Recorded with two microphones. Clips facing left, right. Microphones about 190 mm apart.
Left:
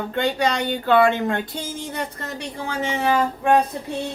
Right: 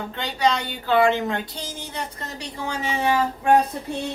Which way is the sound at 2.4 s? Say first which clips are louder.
Left 1 dB; 55° left (ahead or behind).